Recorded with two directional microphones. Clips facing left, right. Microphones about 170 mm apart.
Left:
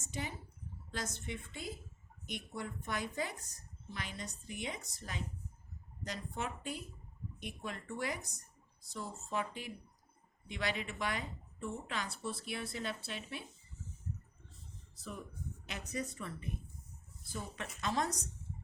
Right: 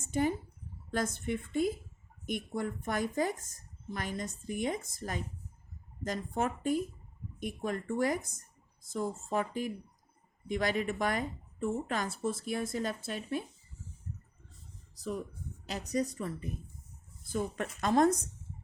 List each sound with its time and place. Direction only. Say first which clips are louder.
0.0 s a woman's voice: right 12 dB; 50° right (ahead or behind)
15.6 s speech: right 9 dB; 35° right (ahead or behind)
17.2 s a woman's voice: right 10 dB; 50° right (ahead or behind)